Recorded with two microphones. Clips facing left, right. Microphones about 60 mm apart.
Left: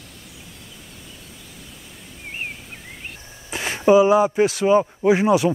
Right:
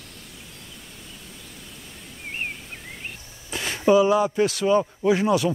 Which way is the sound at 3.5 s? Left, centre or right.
Left.